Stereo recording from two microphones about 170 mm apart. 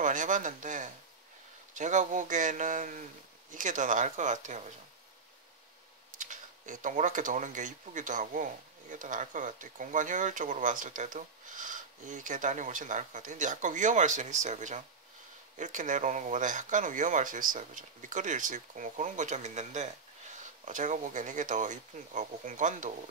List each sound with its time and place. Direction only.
0.0 s speech: 50° right (ahead or behind)
6.1 s speech: 50° right (ahead or behind)